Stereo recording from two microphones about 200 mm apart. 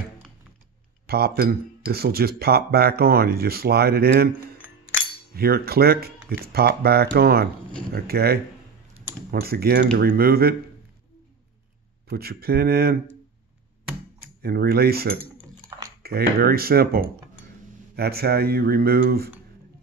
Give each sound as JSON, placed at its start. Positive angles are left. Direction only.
{"t": 1.0, "sound": "speech", "side_deg": -50}
{"t": 5.3, "sound": "speech", "side_deg": -50}
{"t": 12.1, "sound": "speech", "side_deg": -50}
{"t": 14.4, "sound": "speech", "side_deg": -50}